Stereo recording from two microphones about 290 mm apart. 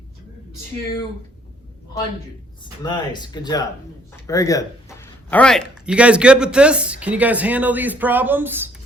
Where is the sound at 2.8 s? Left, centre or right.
Centre.